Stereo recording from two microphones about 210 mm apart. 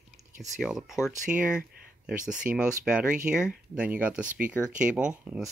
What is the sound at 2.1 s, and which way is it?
Speech, 5° right (ahead or behind).